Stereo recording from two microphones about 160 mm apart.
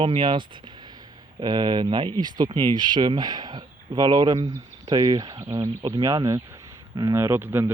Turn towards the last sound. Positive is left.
turn(degrees=-15)  # may be behind; listen again after turning